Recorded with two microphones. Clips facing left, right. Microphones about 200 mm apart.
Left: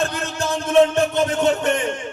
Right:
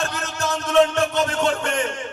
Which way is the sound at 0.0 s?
30° left (ahead or behind).